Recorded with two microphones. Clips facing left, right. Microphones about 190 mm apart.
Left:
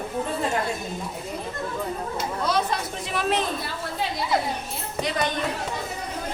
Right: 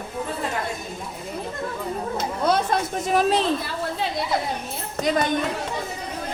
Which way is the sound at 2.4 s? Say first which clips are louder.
Right 5 dB; 50° right (ahead or behind).